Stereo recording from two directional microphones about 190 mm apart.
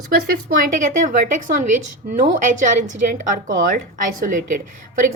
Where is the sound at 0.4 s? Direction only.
45° right (ahead or behind).